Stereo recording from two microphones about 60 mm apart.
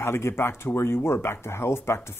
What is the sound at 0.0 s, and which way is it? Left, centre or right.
Speech, left.